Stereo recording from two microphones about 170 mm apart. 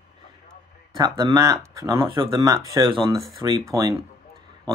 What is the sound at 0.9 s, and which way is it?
Speech, 25° right (ahead or behind).